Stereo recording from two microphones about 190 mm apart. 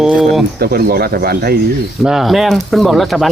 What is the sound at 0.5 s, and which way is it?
Speech, 55° right (ahead or behind).